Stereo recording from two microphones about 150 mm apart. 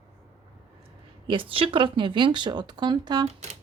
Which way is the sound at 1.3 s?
35° right (ahead or behind).